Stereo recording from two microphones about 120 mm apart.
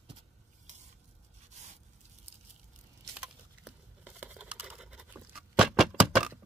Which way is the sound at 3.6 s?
10° right (ahead or behind).